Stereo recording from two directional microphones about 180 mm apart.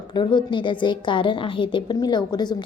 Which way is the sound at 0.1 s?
25° left (ahead or behind).